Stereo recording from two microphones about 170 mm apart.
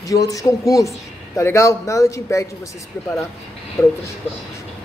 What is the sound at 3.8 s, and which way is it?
Speech, 5° left (ahead or behind).